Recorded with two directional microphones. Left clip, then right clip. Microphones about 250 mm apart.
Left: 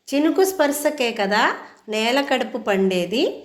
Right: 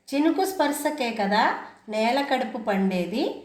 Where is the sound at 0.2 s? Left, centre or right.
Left.